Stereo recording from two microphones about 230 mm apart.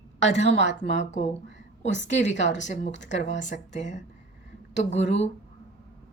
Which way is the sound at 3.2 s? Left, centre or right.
Left.